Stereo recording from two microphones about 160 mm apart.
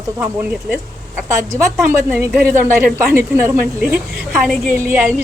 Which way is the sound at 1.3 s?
20° right (ahead or behind).